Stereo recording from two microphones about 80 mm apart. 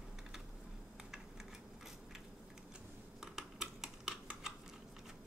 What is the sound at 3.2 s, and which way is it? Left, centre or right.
Typing, centre.